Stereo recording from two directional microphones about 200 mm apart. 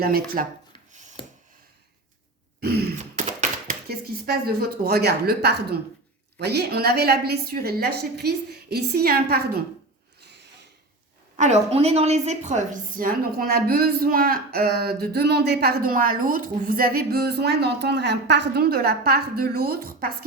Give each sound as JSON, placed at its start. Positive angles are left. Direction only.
{"t": 0.0, "sound": "a woman's voice", "side_deg": -50}
{"t": 1.2, "sound": "a sound", "side_deg": 25}
{"t": 2.6, "sound": "throat clearing", "side_deg": -50}
{"t": 3.7, "sound": "a woman's voice", "side_deg": -50}
{"t": 11.3, "sound": "a woman's voice", "side_deg": -35}